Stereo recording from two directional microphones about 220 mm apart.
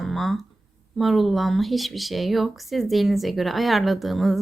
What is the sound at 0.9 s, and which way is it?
Speech, centre (ahead or behind).